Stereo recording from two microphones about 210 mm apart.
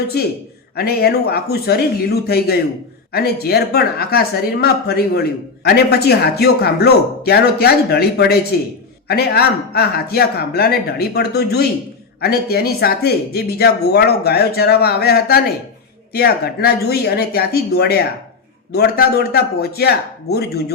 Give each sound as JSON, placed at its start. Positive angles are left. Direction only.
{"t": 0.8, "sound": "speech", "side_deg": 50}